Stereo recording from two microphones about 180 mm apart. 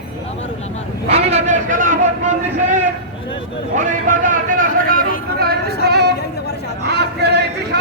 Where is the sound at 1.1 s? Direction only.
35° right (ahead or behind).